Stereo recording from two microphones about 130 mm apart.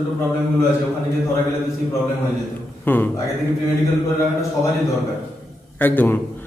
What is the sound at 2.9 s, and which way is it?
Speech, 15° left (ahead or behind).